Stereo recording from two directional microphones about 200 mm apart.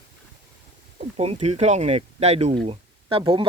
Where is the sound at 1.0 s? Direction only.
35° right (ahead or behind).